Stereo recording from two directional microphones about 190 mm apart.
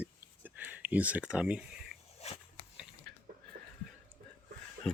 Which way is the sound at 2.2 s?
35° left (ahead or behind).